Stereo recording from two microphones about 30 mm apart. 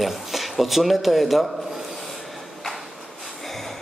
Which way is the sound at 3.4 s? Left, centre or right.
Centre.